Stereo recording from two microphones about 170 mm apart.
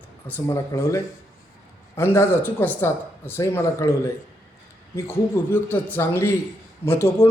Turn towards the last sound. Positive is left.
turn(degrees=15)  # may be behind; listen again after turning